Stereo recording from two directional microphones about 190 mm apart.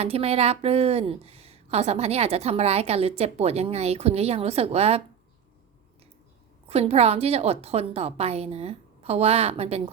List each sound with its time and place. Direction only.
0.0 s a woman's voice: 30° right (ahead or behind)
6.7 s a woman's voice: 35° right (ahead or behind)